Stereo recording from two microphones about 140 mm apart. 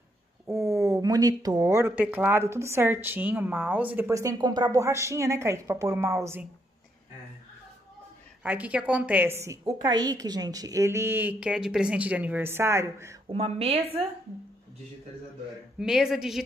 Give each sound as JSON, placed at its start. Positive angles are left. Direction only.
{"t": 0.5, "sound": "speech", "side_deg": -20}
{"t": 8.4, "sound": "a woman's voice", "side_deg": -10}
{"t": 13.3, "sound": "a woman's voice", "side_deg": -45}
{"t": 15.8, "sound": "speech", "side_deg": -5}